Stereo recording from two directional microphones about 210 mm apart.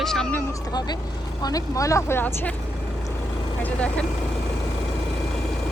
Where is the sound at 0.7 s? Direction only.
20° left (ahead or behind).